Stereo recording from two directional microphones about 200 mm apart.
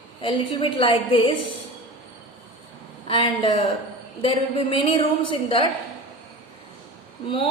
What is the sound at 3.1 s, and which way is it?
A woman's voice, 25° left (ahead or behind).